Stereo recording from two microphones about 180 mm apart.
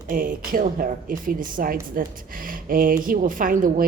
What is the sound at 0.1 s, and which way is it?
Speech, 50° right (ahead or behind).